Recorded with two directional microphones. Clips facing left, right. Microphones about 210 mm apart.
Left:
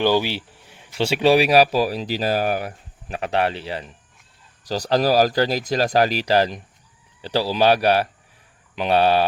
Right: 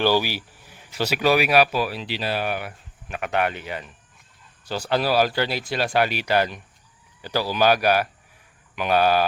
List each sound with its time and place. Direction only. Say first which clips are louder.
0.0 s speech: left 2 dB; 20° left (ahead or behind)
8.7 s mantra: left 2 dB; 30° left (ahead or behind)